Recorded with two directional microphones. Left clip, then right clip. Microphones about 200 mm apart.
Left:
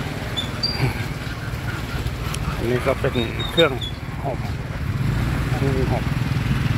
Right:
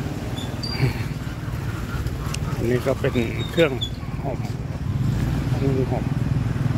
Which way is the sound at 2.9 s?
15° right (ahead or behind).